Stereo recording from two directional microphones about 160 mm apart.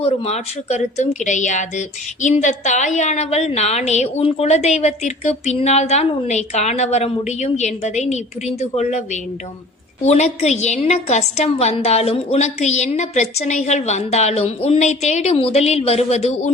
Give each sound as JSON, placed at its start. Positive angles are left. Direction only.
{"t": 0.0, "sound": "a woman's voice", "side_deg": 40}